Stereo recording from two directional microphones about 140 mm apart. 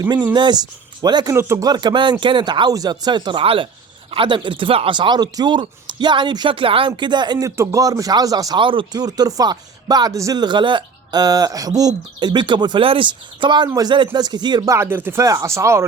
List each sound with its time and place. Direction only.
0.3 s speech: 30° right (ahead or behind)